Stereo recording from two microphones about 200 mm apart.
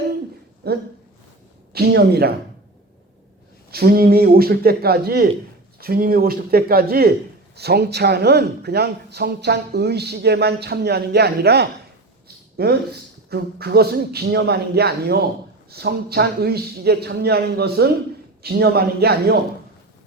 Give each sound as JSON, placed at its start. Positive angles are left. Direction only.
{"t": 0.6, "sound": "a man's voice", "side_deg": -50}
{"t": 3.7, "sound": "a man's voice", "side_deg": -50}